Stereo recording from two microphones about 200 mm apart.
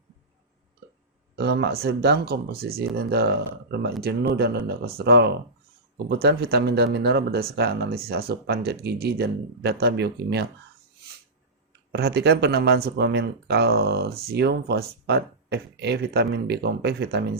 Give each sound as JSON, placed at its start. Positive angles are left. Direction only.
{"t": 1.4, "sound": "speech", "side_deg": -55}
{"t": 11.7, "sound": "speech", "side_deg": -55}